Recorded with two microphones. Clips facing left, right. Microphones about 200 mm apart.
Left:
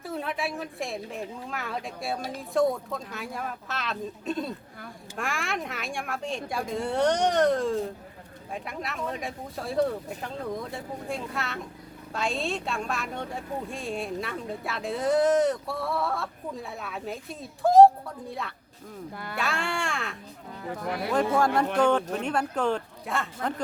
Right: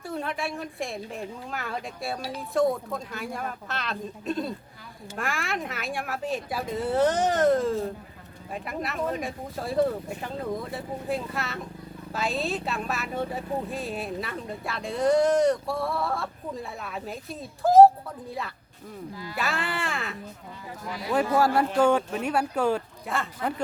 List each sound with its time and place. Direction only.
0.0 s speech: centre (ahead or behind)
19.1 s speech: 60° left (ahead or behind)
19.4 s speech: centre (ahead or behind)
20.7 s speech: 60° left (ahead or behind)
21.3 s speech: 5° right (ahead or behind)